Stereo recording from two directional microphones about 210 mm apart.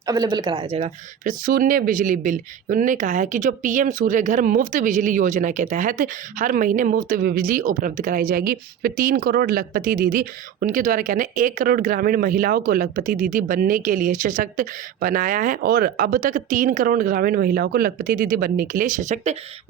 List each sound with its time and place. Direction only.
0.0 s speech: 20° right (ahead or behind)
1.2 s speech: 40° right (ahead or behind)